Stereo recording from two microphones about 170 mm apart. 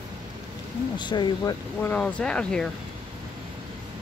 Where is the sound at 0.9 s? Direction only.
25° left (ahead or behind).